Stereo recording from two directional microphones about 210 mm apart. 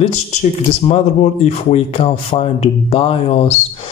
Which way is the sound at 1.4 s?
30° left (ahead or behind).